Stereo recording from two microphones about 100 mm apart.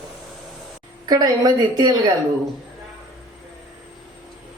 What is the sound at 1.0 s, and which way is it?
Speech, 40° right (ahead or behind).